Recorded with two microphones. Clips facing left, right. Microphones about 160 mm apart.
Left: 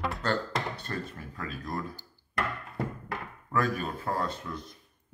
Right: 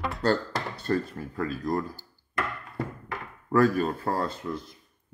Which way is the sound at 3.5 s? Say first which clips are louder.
Right 8 dB; 35° right (ahead or behind).